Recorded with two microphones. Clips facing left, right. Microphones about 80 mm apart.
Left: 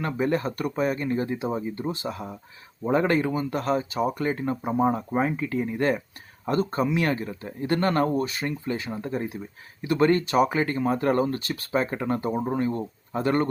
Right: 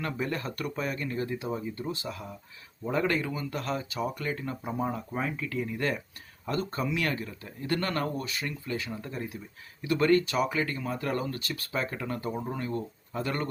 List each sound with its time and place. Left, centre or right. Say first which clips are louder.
0.0 s speech: left 7 dB; left